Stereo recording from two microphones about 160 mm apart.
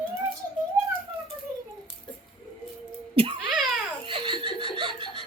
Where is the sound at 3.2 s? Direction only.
35° right (ahead or behind).